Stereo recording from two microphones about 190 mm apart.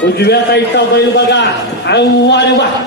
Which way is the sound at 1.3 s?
65° left (ahead or behind).